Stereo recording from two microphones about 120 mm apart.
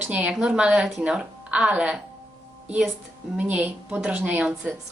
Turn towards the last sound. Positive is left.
turn(degrees=-10)  # may be behind; listen again after turning